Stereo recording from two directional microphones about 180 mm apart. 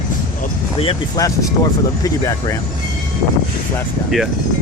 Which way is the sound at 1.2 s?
20° left (ahead or behind).